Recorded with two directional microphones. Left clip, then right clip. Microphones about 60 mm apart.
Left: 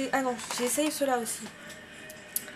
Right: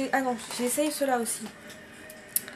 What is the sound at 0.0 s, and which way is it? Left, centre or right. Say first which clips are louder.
Speech: right 2 dB; centre.